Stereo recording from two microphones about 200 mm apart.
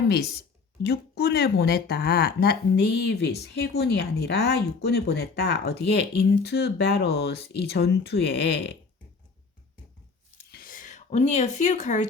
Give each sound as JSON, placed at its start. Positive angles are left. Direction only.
{"t": 0.8, "sound": "speech", "side_deg": 55}
{"t": 10.5, "sound": "speech", "side_deg": 45}